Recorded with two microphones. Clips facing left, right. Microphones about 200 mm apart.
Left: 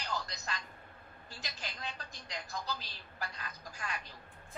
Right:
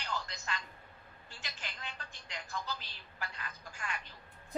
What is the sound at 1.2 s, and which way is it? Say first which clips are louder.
A woman's voice: left 2 dB; 40° left (ahead or behind).